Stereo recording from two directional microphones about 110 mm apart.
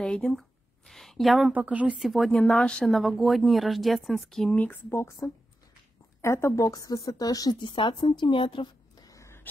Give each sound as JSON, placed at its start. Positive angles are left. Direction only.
{"t": 0.0, "sound": "a sound", "side_deg": 5}
{"t": 1.5, "sound": "a woman's voice", "side_deg": -15}
{"t": 2.0, "sound": "speech", "side_deg": 0}
{"t": 4.6, "sound": "speech", "side_deg": 15}
{"t": 6.2, "sound": "a woman's voice", "side_deg": 25}
{"t": 7.7, "sound": "a woman's voice", "side_deg": 45}
{"t": 9.1, "sound": "a sound", "side_deg": 25}